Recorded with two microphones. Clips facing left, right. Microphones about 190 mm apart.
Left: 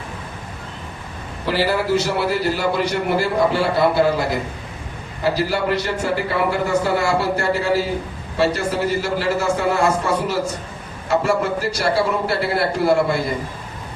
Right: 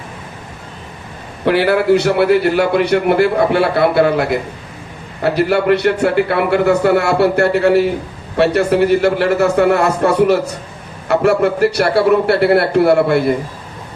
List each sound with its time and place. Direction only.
1.5 s a man's voice: 60° right (ahead or behind)